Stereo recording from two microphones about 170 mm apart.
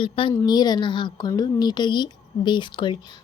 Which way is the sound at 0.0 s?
30° left (ahead or behind).